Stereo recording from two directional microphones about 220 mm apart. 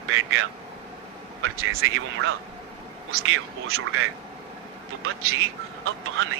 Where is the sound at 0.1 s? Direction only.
65° right (ahead or behind).